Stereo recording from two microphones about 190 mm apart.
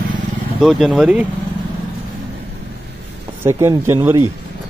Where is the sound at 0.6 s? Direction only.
Centre (ahead or behind).